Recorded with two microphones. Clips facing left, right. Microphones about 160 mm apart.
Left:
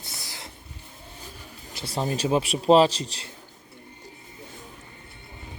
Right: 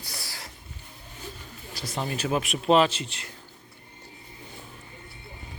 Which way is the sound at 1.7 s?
30° left (ahead or behind).